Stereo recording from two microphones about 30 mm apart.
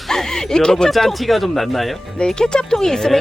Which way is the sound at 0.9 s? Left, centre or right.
Centre.